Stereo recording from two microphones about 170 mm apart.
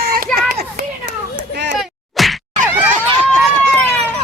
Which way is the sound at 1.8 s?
Centre (ahead or behind).